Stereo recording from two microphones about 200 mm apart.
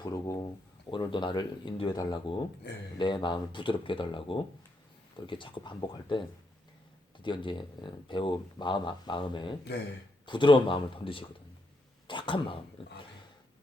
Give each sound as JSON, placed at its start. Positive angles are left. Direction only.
{"t": 0.0, "sound": "speech", "side_deg": 20}
{"t": 2.6, "sound": "speech", "side_deg": 60}
{"t": 3.0, "sound": "speech", "side_deg": 20}